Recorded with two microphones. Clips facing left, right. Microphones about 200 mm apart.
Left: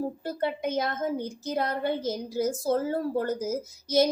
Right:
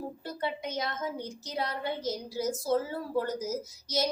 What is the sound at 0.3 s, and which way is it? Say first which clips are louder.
A woman's voice: left 4 dB; 50° left (ahead or behind).